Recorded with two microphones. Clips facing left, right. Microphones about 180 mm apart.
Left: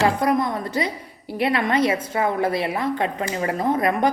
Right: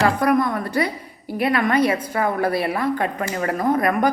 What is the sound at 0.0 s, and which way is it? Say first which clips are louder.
A woman's voice: right 2 dB; 20° left (ahead or behind).